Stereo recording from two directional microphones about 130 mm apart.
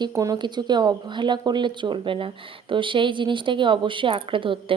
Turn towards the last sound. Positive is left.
turn(degrees=-40)  # may be behind; listen again after turning